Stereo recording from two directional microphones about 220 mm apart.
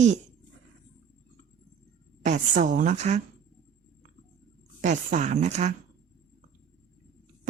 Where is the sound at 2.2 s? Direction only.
30° right (ahead or behind).